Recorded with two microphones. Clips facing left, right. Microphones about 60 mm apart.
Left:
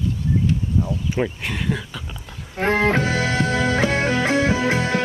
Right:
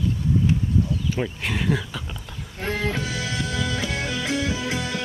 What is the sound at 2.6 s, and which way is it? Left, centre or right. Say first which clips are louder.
Music: left 8 dB; left.